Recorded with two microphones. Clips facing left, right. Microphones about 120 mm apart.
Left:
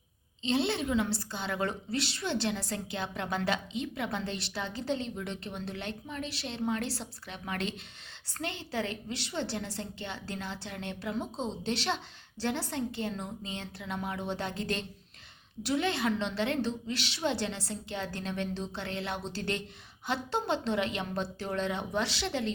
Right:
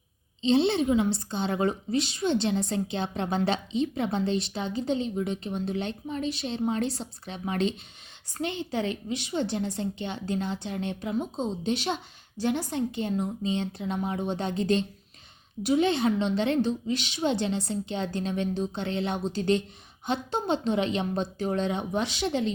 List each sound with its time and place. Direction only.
0.4 s a woman's voice: 25° right (ahead or behind)